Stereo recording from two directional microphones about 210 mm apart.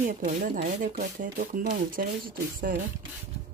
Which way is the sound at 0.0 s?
40° right (ahead or behind).